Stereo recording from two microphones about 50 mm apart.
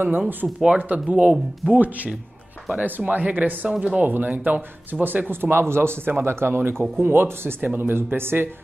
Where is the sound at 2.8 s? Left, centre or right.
Right.